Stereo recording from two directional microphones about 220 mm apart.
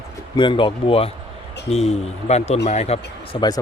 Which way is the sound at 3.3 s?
20° left (ahead or behind).